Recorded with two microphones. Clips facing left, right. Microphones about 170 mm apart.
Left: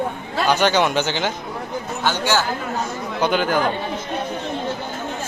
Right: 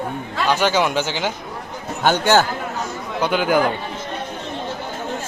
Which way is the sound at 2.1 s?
55° right (ahead or behind).